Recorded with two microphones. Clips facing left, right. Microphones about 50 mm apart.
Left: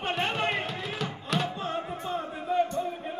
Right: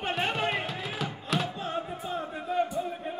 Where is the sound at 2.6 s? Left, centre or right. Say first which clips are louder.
Left 1 dB; centre.